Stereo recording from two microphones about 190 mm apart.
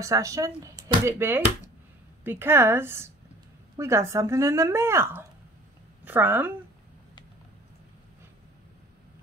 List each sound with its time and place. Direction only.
0.0 s a woman's voice: 15° right (ahead or behind)